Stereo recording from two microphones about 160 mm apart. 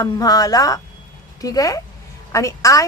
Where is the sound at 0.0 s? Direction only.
25° left (ahead or behind).